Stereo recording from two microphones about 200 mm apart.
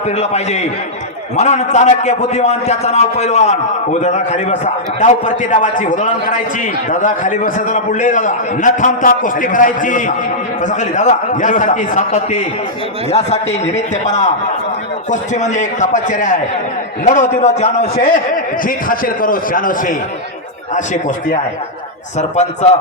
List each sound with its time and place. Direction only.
0.2 s a man's voice: 35° left (ahead or behind)